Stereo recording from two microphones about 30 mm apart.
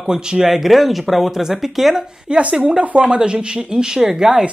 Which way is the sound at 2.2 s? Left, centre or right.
Right.